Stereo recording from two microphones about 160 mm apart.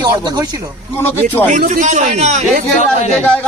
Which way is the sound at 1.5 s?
50° right (ahead or behind).